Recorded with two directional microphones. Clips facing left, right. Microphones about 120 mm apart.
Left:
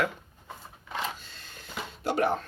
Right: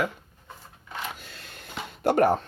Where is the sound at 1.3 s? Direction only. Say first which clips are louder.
Right 4 dB; 70° right (ahead or behind).